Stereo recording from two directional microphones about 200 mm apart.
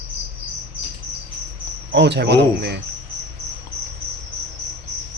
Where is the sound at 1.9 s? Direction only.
60° right (ahead or behind).